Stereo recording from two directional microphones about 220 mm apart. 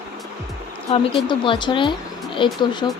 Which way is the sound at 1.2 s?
20° left (ahead or behind).